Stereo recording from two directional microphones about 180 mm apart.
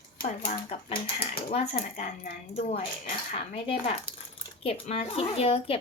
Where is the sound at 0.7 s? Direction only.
35° left (ahead or behind).